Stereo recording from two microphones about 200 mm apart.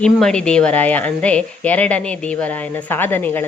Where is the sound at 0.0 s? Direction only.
5° left (ahead or behind).